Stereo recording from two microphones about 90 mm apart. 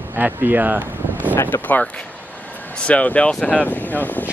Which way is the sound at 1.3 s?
25° left (ahead or behind).